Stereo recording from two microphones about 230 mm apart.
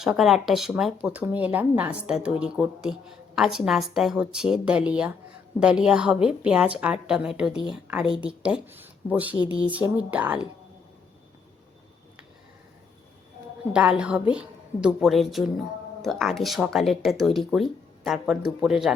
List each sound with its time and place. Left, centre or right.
0.0 s speech: centre
9.4 s speech: centre
10.1 s speech: centre
13.7 s speech: centre